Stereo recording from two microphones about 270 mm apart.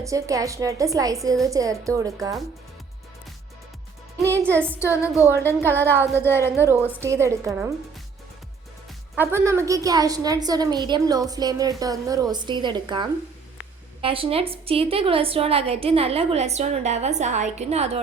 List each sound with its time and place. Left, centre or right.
0.0 s a woman's voice: centre
4.7 s speech: centre
7.0 s a woman's voice: centre
9.1 s a woman's voice: centre